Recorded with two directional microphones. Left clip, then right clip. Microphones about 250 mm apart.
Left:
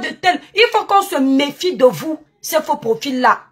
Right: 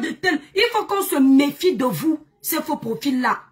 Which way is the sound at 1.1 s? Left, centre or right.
Centre.